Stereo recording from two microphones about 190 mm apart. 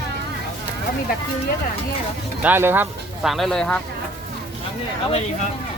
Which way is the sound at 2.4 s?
10° right (ahead or behind).